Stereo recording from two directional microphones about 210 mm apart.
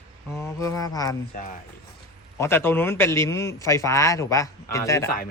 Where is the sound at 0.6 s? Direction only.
15° left (ahead or behind).